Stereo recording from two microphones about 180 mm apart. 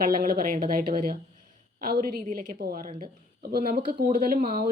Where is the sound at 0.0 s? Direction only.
55° right (ahead or behind).